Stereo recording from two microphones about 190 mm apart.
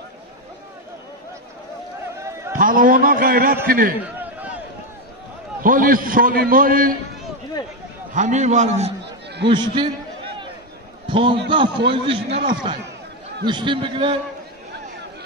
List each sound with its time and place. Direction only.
2.1 s a sound: 15° right (ahead or behind)
2.5 s a man's voice: 45° right (ahead or behind)
4.0 s a sound: 10° right (ahead or behind)
5.6 s a man's voice: 45° right (ahead or behind)
8.1 s a man's voice: 40° right (ahead or behind)
9.5 s a man's voice: 25° right (ahead or behind)
11.1 s a man's voice: 25° right (ahead or behind)
13.5 s a man's voice: 25° right (ahead or behind)